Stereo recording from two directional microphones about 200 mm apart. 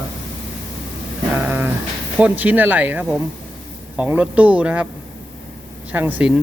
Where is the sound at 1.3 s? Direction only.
10° right (ahead or behind).